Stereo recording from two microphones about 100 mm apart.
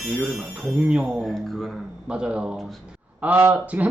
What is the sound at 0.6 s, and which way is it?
Speech, 10° right (ahead or behind).